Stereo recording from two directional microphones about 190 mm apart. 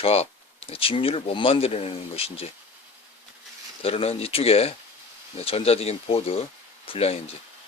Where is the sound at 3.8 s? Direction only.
30° left (ahead or behind).